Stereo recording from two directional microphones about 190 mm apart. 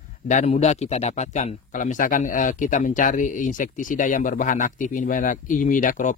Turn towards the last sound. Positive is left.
turn(degrees=45)  # may be behind; listen again after turning